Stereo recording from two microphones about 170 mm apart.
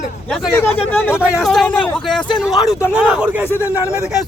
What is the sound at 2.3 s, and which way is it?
Speech, 20° left (ahead or behind).